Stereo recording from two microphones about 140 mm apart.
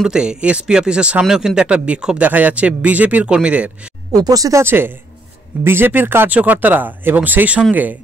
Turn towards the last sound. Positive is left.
turn(degrees=-10)  # may be behind; listen again after turning